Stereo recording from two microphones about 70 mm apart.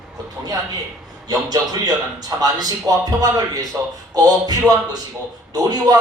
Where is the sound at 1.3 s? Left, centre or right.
Right.